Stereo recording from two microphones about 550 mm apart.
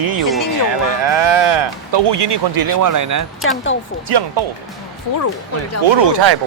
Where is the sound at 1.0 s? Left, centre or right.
Right.